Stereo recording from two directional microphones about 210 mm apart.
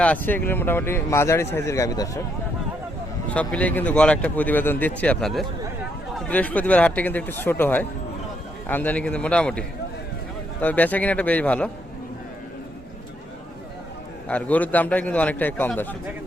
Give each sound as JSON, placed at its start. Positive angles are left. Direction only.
{"t": 0.0, "sound": "speech", "side_deg": 5}
{"t": 3.2, "sound": "a man's voice", "side_deg": 5}
{"t": 14.3, "sound": "speech", "side_deg": 5}